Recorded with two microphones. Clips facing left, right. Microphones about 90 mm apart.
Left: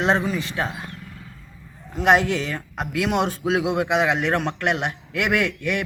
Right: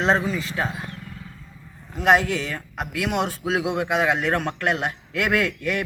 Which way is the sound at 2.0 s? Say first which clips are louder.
Left 1 dB; 25° left (ahead or behind).